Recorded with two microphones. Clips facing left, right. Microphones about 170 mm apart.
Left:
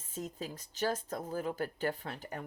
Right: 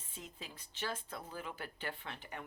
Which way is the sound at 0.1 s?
40° left (ahead or behind).